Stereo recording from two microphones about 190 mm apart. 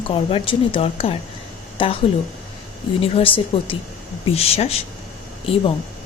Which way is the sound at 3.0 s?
30° left (ahead or behind).